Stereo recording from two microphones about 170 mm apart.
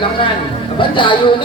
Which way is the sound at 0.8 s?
30° left (ahead or behind).